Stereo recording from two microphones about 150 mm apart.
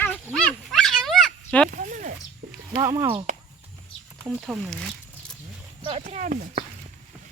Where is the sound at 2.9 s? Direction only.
20° right (ahead or behind).